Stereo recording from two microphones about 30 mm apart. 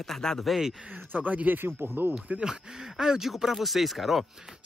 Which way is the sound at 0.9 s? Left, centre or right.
Right.